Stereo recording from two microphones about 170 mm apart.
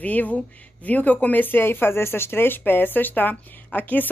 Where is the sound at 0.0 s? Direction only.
10° left (ahead or behind).